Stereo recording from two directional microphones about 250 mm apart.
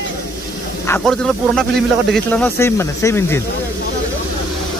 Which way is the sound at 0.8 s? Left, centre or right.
Centre.